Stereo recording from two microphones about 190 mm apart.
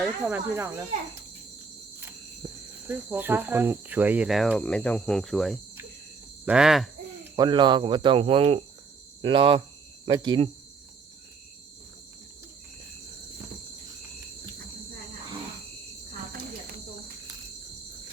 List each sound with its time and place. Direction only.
0.0 s speech: 10° right (ahead or behind)
2.4 s cricket: 15° right (ahead or behind); by 5.5 s centre (ahead or behind)
6.4 s speech: 5° right (ahead or behind)
7.3 s speech: 20° right (ahead or behind)